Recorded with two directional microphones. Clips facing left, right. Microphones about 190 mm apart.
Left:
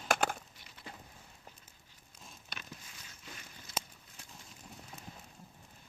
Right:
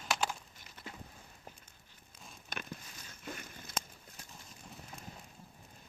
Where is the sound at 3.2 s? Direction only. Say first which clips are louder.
Right 8 dB; 50° right (ahead or behind).